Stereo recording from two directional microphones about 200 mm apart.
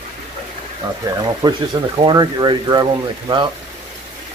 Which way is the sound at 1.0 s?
15° right (ahead or behind).